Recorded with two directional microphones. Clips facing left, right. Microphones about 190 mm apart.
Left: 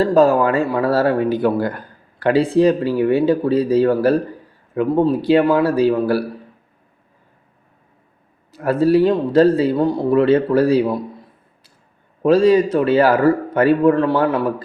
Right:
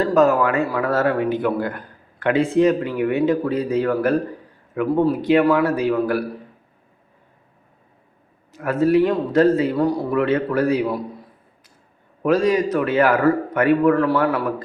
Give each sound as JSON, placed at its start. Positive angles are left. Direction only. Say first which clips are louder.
{"t": 0.0, "sound": "speech", "louder": "left 3 dB", "side_deg": 30}
{"t": 8.5, "sound": "speech", "louder": "left 2 dB", "side_deg": 35}
{"t": 12.2, "sound": "a man's voice", "louder": "left 5 dB", "side_deg": 30}